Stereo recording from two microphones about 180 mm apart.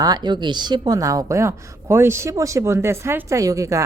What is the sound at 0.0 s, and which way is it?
A woman's voice, 25° right (ahead or behind).